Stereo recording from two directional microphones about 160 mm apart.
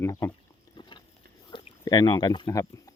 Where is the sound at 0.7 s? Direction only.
30° left (ahead or behind).